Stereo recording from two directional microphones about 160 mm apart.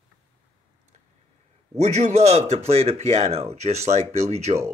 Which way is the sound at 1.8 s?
45° right (ahead or behind).